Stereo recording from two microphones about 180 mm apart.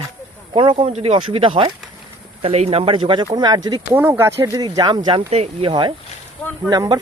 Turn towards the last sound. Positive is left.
turn(degrees=-20)  # may be behind; listen again after turning